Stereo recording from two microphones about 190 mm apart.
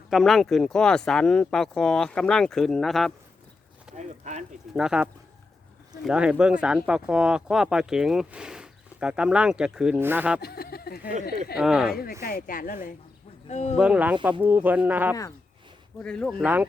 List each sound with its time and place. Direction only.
0.1 s speech: centre (ahead or behind)
3.9 s speech: 40° right (ahead or behind)
4.7 s speech: 5° right (ahead or behind)
6.1 s speech: 5° right (ahead or behind)
10.4 s a sound: 55° left (ahead or behind)
11.5 s speech: centre (ahead or behind)
11.9 s speech: 50° left (ahead or behind)
13.5 s speech: 35° left (ahead or behind)
13.7 s speech: 5° right (ahead or behind)
16.0 s speech: 5° left (ahead or behind)
16.4 s speech: 10° right (ahead or behind)